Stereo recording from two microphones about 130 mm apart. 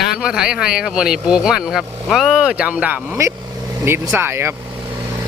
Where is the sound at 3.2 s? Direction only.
25° right (ahead or behind).